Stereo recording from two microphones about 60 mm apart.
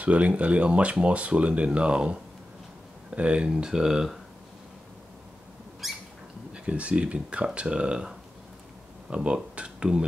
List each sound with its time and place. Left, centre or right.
0.0 s speech: right
3.2 s speech: centre
5.8 s rodents: centre
6.5 s speech: centre